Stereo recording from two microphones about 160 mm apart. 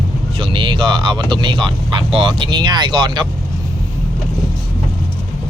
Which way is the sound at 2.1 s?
30° right (ahead or behind).